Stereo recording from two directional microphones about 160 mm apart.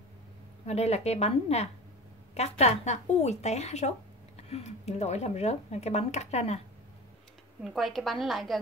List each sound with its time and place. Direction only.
0.7 s a woman's voice: 40° left (ahead or behind)
7.6 s a woman's voice: centre (ahead or behind)